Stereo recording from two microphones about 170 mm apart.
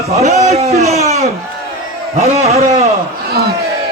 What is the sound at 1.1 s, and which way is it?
Crowd, 40° right (ahead or behind).